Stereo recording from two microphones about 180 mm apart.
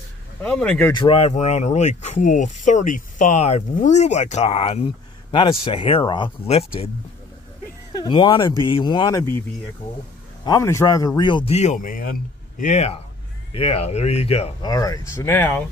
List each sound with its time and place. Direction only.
0.4 s speech: 5° left (ahead or behind)
0.9 s speech: 30° left (ahead or behind)
8.0 s a man's voice: 25° left (ahead or behind)
10.4 s a man's voice: 15° left (ahead or behind); by 14.7 s 35° left (ahead or behind)
14.7 s speech: 20° left (ahead or behind)